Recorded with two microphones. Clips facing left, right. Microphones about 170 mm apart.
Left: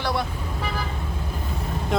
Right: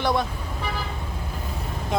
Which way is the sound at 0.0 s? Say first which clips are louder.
Right 3 dB; 20° right (ahead or behind).